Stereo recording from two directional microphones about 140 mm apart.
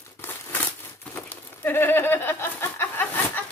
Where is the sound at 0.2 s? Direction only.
15° left (ahead or behind).